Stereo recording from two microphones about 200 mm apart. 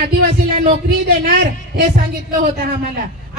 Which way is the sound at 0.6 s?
45° right (ahead or behind).